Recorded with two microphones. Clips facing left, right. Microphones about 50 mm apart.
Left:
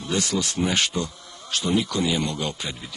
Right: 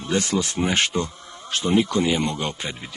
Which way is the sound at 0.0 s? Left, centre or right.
Right.